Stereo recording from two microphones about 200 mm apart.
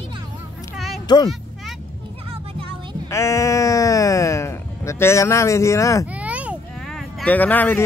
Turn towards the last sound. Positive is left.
turn(degrees=10)  # may be behind; listen again after turning